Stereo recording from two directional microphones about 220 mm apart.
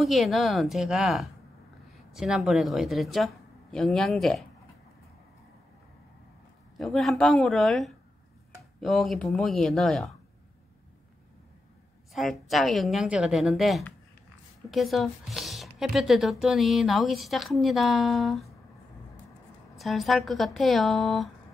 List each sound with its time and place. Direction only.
0.0 s speech: centre (ahead or behind)
6.8 s speech: centre (ahead or behind)
12.1 s speech: centre (ahead or behind)
19.8 s speech: centre (ahead or behind)